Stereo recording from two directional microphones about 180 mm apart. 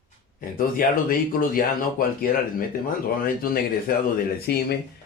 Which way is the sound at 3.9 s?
55° left (ahead or behind).